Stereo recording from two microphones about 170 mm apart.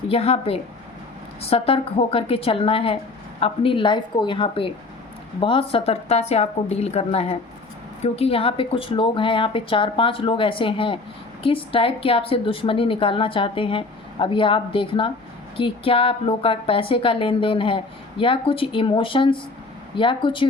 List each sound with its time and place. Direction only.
0.1 s a woman's voice: 35° left (ahead or behind)